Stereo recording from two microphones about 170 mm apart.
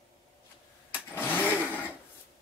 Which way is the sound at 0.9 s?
10° left (ahead or behind).